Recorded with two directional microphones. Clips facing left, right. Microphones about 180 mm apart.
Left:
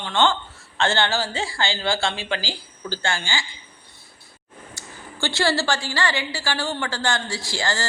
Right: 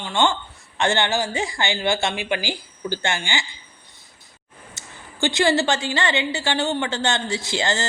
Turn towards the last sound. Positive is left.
turn(degrees=-20)  # may be behind; listen again after turning